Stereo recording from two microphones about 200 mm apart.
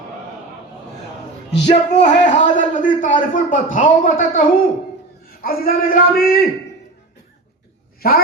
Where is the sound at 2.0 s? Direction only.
40° left (ahead or behind).